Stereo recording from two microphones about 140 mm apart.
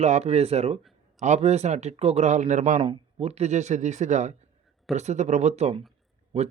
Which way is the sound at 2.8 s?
45° right (ahead or behind).